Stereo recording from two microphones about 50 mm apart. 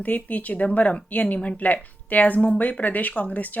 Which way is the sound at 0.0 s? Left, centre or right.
Left.